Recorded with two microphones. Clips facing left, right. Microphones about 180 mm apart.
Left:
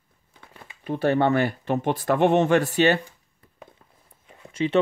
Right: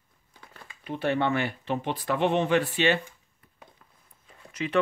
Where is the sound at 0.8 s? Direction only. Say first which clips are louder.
Left 5 dB; 40° left (ahead or behind).